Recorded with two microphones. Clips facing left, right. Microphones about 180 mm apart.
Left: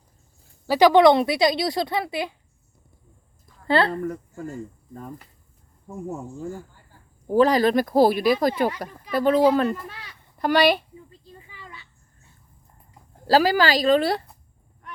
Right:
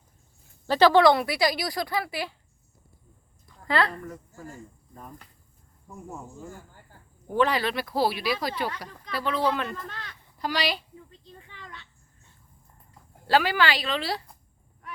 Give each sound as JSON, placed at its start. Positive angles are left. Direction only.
{"t": 0.7, "sound": "a woman's voice", "side_deg": 15}
{"t": 3.7, "sound": "a woman's voice", "side_deg": 30}
{"t": 7.3, "sound": "a woman's voice", "side_deg": 35}
{"t": 9.7, "sound": "speech", "side_deg": 10}
{"t": 10.3, "sound": "a woman's voice", "side_deg": 55}
{"t": 11.1, "sound": "a sound", "side_deg": 5}
{"t": 13.2, "sound": "a woman's voice", "side_deg": 35}